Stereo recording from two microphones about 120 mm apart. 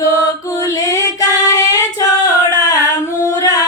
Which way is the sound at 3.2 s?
30° left (ahead or behind).